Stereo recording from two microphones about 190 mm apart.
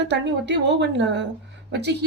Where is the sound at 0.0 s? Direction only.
65° right (ahead or behind).